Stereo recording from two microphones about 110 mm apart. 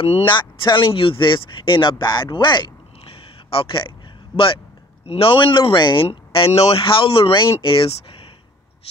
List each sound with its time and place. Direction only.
0.0 s speech: 55° left (ahead or behind)
5.0 s speech: 60° left (ahead or behind)
6.0 s speech: 65° left (ahead or behind)